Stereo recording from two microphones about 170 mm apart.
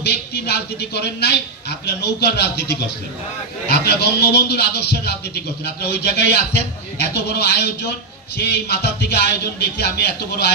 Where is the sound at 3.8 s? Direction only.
70° left (ahead or behind).